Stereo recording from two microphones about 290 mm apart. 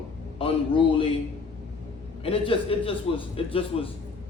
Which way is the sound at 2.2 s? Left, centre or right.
Centre.